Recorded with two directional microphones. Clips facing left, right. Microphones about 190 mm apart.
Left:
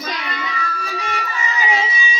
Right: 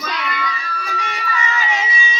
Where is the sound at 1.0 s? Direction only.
40° left (ahead or behind).